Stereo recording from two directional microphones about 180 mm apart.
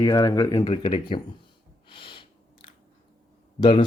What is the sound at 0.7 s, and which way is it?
Speech, 30° left (ahead or behind).